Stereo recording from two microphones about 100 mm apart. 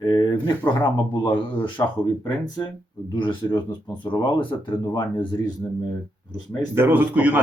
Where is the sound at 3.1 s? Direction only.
50° left (ahead or behind).